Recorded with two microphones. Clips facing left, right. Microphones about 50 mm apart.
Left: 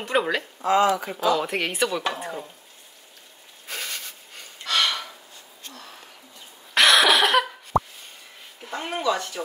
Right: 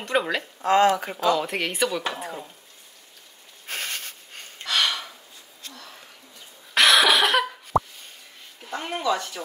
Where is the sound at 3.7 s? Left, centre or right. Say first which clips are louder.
Right 2 dB; right.